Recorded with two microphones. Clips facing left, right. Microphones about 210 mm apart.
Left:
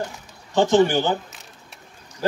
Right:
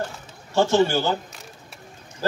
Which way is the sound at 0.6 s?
15° left (ahead or behind).